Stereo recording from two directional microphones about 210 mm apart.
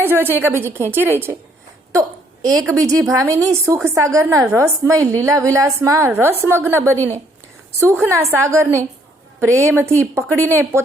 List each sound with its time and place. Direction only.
0.0 s a woman's voice: 10° right (ahead or behind)
1.9 s hiccup: 15° right (ahead or behind)
2.6 s a woman's voice: 15° right (ahead or behind)
7.9 s a woman's voice: 10° right (ahead or behind)